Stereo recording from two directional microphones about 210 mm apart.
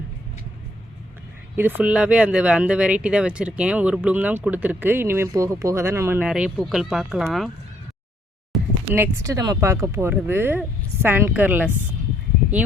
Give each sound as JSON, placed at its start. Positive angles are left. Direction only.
{"t": 1.5, "sound": "speech", "side_deg": -10}
{"t": 8.5, "sound": "a sound", "side_deg": 0}
{"t": 8.9, "sound": "speech", "side_deg": -15}